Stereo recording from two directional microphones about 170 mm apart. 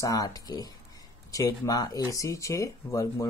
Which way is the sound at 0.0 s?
20° left (ahead or behind).